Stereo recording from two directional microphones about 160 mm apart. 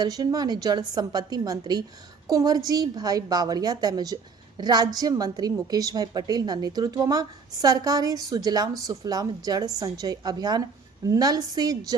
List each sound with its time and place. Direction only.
0.0 s a woman's voice: 25° right (ahead or behind)